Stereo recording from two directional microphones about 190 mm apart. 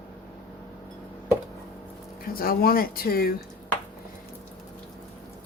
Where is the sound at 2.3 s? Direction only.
50° left (ahead or behind).